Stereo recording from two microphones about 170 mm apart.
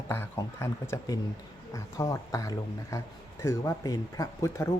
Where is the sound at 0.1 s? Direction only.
15° left (ahead or behind).